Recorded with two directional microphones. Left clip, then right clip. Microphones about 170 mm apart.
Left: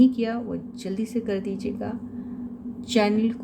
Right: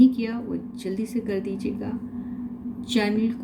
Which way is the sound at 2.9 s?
40° left (ahead or behind).